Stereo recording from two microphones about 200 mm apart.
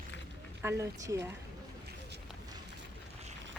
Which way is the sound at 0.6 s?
10° right (ahead or behind).